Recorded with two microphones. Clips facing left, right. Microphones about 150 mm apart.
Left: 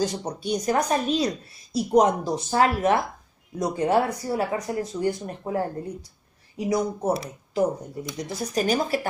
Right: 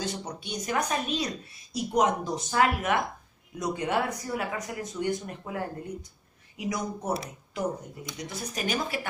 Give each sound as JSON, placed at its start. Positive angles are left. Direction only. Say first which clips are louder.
{"t": 0.0, "sound": "speech", "louder": "left 7 dB", "side_deg": 40}